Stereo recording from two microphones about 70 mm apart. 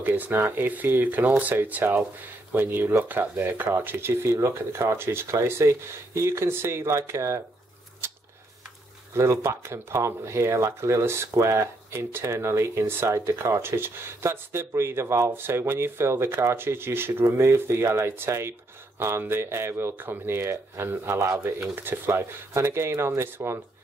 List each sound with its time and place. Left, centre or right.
0.0 s speech: right
8.0 s a sound: right
9.1 s speech: right